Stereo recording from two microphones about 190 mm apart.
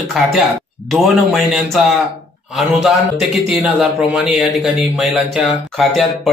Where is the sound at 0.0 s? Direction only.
Centre (ahead or behind).